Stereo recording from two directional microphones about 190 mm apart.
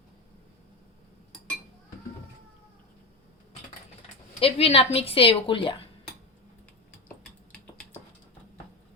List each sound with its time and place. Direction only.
4.4 s a woman's voice: 30° left (ahead or behind)